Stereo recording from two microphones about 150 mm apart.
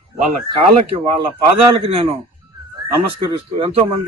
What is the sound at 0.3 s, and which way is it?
Speech, 45° right (ahead or behind).